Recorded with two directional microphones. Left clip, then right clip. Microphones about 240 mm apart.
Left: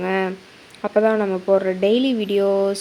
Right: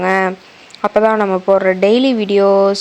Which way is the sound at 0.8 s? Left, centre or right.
Centre.